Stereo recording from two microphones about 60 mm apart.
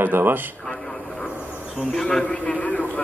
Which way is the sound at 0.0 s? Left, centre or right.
Right.